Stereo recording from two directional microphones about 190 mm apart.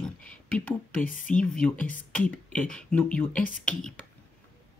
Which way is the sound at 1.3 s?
5° left (ahead or behind).